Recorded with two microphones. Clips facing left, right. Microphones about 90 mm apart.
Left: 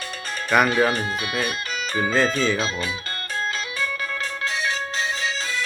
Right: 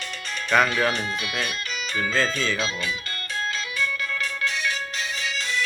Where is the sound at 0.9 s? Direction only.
40° left (ahead or behind).